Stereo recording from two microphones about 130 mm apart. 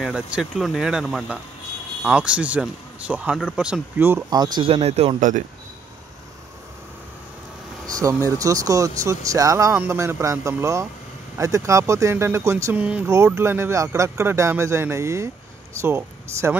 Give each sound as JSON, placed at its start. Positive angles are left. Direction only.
{"t": 0.0, "sound": "speech", "side_deg": -5}
{"t": 4.3, "sound": "speech", "side_deg": -30}
{"t": 4.6, "sound": "speech", "side_deg": -50}
{"t": 7.8, "sound": "speech", "side_deg": -25}
{"t": 12.7, "sound": "speech", "side_deg": -10}
{"t": 13.1, "sound": "speech", "side_deg": -20}